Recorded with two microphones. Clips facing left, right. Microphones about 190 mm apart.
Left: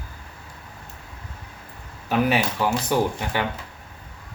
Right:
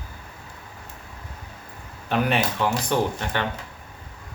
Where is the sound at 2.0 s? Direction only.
5° left (ahead or behind).